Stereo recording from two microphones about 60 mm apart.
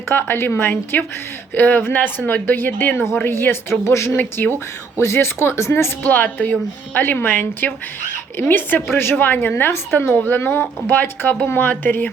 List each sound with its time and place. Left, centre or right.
0.1 s speech: left
3.2 s speech: left
4.2 s speech: left
4.9 s speech: left
6.0 s speech: left
9.1 s speech: left